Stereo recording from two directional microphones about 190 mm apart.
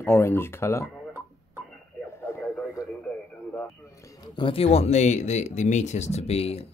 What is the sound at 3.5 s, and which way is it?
Speech, 15° left (ahead or behind).